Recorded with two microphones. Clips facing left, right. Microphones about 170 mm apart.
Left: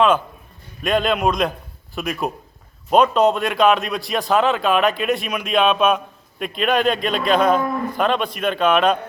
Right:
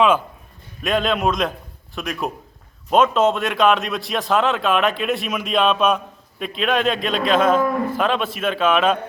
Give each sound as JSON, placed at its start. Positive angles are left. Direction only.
{"t": 0.8, "sound": "a man's voice", "side_deg": 0}